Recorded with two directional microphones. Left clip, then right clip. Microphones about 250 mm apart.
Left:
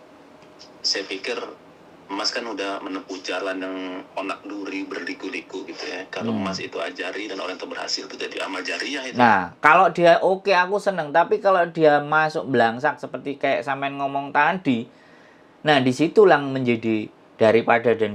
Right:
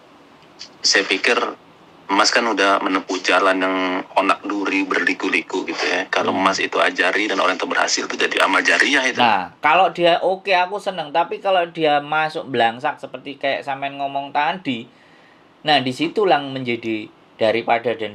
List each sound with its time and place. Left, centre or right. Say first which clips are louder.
0.6 s speech: right 9 dB; right
9.2 s speech: even; left